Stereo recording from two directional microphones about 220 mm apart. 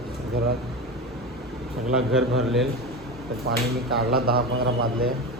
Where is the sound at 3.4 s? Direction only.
45° right (ahead or behind).